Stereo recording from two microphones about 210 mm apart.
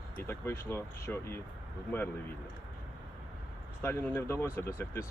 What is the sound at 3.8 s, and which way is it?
Speech, 10° left (ahead or behind).